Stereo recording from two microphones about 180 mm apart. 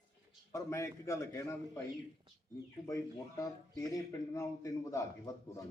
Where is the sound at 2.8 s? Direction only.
20° left (ahead or behind).